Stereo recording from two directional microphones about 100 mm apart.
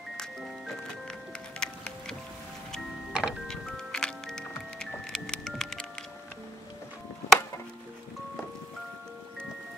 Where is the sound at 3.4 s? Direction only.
5° left (ahead or behind).